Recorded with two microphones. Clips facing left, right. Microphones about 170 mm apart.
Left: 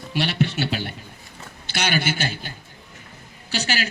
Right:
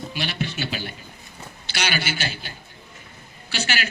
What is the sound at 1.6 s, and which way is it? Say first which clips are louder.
Speech: left 3 dB; 50° left (ahead or behind).